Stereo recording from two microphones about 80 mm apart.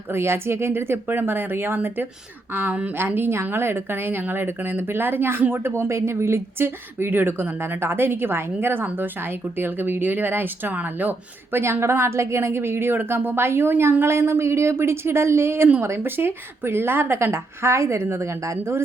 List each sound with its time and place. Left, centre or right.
0.1 s speech: right
11.5 s speech: right